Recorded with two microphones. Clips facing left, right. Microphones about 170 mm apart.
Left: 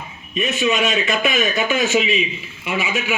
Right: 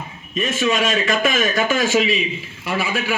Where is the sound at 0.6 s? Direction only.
5° left (ahead or behind).